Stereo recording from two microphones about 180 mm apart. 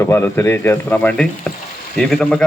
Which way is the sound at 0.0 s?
15° left (ahead or behind).